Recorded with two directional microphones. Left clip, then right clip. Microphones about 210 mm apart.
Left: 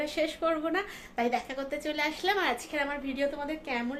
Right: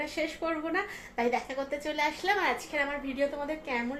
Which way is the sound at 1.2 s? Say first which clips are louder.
Even; 5° left (ahead or behind).